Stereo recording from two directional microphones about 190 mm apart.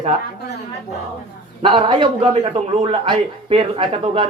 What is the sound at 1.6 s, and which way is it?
A man's voice, 30° right (ahead or behind).